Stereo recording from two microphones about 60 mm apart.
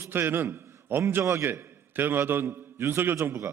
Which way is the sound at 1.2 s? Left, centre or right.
Right.